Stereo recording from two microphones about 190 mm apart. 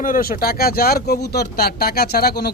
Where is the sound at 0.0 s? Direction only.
45° left (ahead or behind).